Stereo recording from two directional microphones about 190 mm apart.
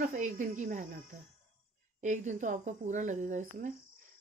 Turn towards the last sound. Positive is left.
turn(degrees=-40)  # may be behind; listen again after turning